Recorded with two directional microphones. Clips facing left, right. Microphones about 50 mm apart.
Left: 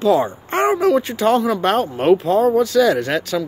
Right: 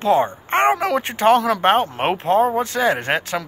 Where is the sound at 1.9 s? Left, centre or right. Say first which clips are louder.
Left 4 dB; right.